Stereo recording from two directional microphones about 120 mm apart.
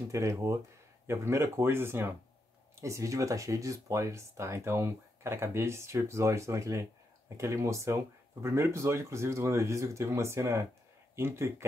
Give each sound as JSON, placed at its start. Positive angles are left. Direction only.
{"t": 0.1, "sound": "speech", "side_deg": -25}